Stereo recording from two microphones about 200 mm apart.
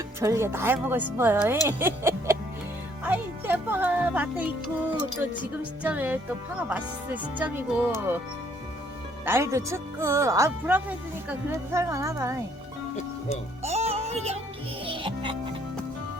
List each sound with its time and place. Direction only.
0.2 s a woman's voice: 15° right (ahead or behind)
9.2 s a woman's voice: 10° right (ahead or behind)
13.6 s music: 30° right (ahead or behind)